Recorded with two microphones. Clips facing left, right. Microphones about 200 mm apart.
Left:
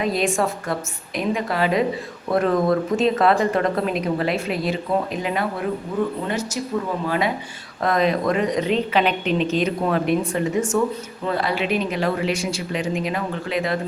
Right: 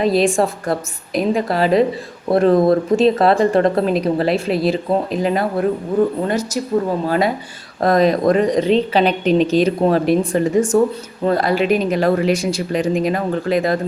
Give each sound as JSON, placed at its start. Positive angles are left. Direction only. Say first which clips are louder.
{"t": 0.0, "sound": "a woman's voice", "louder": "right 6 dB", "side_deg": -35}